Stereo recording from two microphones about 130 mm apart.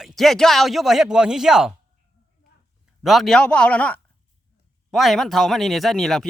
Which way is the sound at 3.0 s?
Centre (ahead or behind).